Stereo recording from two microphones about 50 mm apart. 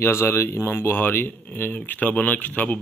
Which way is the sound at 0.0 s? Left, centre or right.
Left.